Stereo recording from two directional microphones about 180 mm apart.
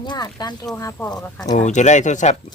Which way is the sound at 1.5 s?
40° left (ahead or behind).